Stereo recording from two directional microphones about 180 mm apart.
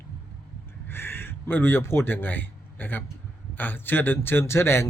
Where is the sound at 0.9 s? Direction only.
10° left (ahead or behind).